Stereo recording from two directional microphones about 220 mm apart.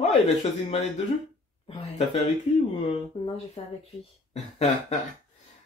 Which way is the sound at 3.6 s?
25° left (ahead or behind).